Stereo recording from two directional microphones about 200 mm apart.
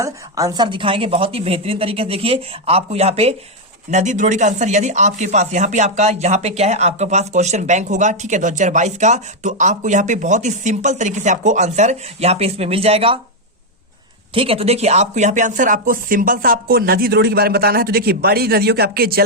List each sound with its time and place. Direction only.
0.0 s a woman's voice: 15° right (ahead or behind)
14.3 s speech: 30° right (ahead or behind); by 19.2 s 50° right (ahead or behind)